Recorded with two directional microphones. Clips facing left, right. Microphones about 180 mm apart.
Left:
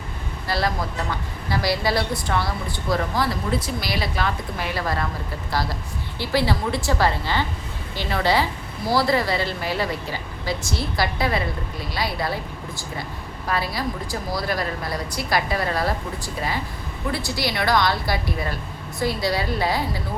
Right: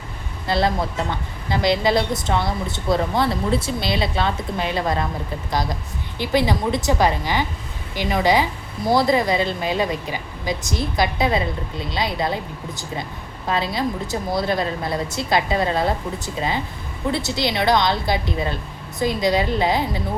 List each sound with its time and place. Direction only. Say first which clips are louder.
0.4 s a woman's voice: right 4 dB; 25° right (ahead or behind)